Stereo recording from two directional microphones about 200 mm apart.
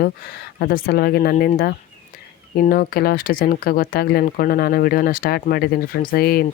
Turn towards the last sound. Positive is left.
turn(degrees=50)  # may be behind; listen again after turning